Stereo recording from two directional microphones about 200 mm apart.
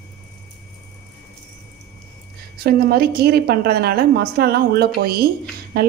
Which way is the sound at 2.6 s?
50° right (ahead or behind).